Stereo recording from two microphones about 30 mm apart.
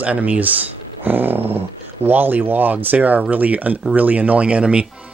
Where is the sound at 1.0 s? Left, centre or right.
Right.